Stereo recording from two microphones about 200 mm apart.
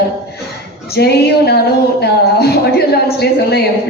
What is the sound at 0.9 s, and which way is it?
Speech, 55° left (ahead or behind).